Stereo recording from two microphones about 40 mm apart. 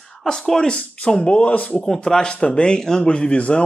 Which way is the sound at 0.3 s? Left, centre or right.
Centre.